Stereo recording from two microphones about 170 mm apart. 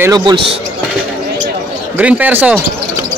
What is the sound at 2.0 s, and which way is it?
Speech, 10° right (ahead or behind).